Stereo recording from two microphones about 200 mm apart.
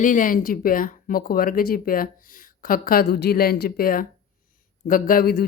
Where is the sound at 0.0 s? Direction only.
40° left (ahead or behind).